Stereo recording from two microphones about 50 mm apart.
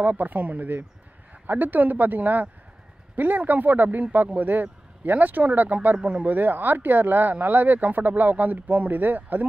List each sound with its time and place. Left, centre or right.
0.0 s speech: right